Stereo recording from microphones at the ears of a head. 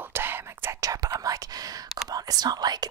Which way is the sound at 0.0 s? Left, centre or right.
Right.